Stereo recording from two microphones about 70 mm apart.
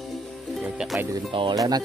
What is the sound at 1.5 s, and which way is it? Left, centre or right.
Speech, right.